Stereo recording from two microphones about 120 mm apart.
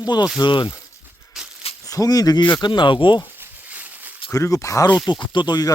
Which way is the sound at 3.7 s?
15° right (ahead or behind).